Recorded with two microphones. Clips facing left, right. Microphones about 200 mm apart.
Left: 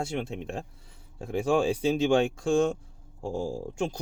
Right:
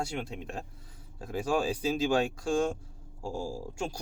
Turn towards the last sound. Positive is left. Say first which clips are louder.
# left 5 dB
turn(degrees=20)  # may be behind; listen again after turning